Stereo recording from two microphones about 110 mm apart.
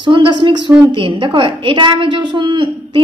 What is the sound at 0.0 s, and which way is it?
A woman's voice, 45° right (ahead or behind).